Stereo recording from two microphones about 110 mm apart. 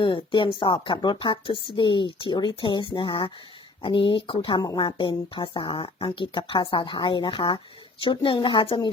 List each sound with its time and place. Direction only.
0.0 s speech: 50° left (ahead or behind)